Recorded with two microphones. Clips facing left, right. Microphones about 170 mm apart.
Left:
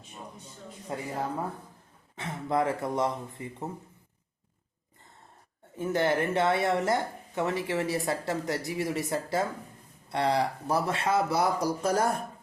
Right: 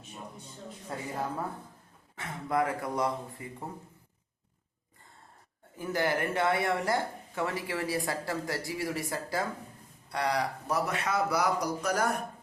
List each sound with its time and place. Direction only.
0.9 s speech: 20° left (ahead or behind)
2.1 s speech: 20° left (ahead or behind)
5.7 s speech: 25° left (ahead or behind)